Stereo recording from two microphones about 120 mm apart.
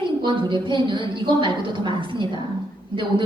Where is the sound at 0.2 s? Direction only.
40° right (ahead or behind).